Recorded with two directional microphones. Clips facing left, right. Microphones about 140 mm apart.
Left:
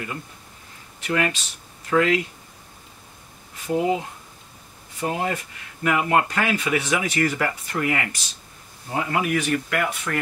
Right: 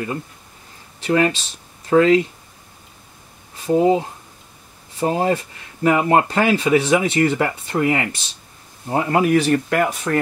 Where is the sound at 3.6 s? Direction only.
30° right (ahead or behind).